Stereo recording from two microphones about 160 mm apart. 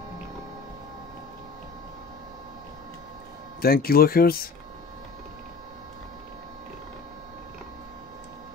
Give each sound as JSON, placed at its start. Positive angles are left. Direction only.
{"t": 3.6, "sound": "speech", "side_deg": 70}